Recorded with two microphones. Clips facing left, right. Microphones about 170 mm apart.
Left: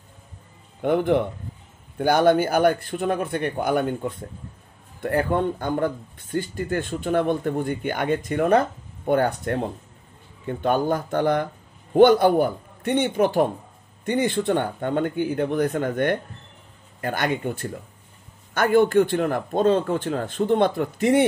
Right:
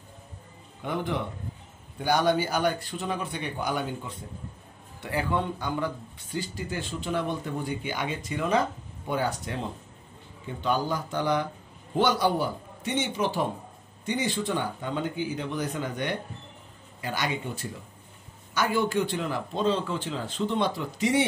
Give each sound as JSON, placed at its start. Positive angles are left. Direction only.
{"t": 0.8, "sound": "a man's voice", "side_deg": 55}